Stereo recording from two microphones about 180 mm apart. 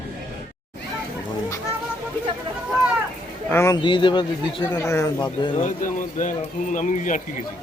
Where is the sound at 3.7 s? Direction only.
25° left (ahead or behind).